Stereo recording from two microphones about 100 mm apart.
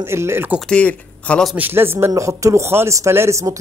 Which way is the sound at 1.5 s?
20° right (ahead or behind).